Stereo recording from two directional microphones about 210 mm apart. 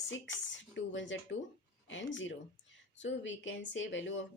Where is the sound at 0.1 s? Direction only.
60° left (ahead or behind).